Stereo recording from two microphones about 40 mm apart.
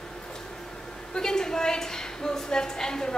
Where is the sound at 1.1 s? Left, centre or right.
Centre.